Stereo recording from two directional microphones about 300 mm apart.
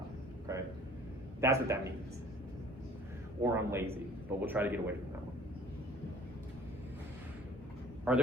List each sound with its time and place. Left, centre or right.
1.4 s a man's voice: centre
3.4 s a man's voice: centre
8.1 s a man's voice: centre